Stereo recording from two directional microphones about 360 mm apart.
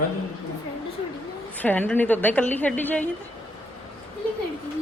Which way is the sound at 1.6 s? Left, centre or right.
Centre.